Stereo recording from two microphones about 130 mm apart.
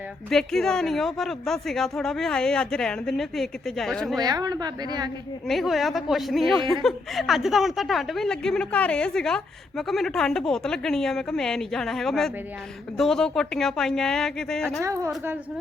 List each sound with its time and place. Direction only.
0.3 s a woman's voice: 5° left (ahead or behind)
4.2 s a woman's voice: 30° right (ahead or behind)
5.5 s a woman's voice: centre (ahead or behind)